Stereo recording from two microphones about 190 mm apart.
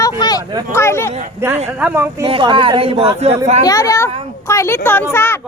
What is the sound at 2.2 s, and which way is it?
Speech, 30° right (ahead or behind).